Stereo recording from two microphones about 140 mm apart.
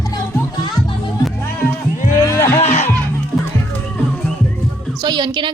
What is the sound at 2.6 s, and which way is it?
Music, 55° left (ahead or behind).